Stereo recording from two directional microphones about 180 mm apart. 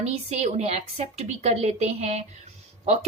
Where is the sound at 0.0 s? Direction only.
35° right (ahead or behind).